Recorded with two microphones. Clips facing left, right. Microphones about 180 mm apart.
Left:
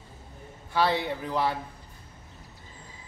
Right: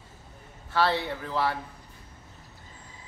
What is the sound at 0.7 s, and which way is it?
Speech, 15° left (ahead or behind).